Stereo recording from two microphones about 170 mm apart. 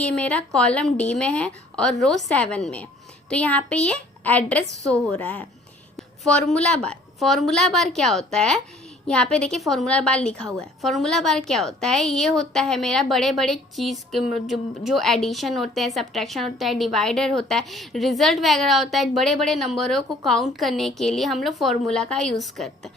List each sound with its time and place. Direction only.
0.0 s a woman's voice: 5° left (ahead or behind)